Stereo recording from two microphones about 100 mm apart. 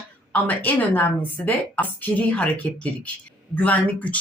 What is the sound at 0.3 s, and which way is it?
Speech, 15° left (ahead or behind).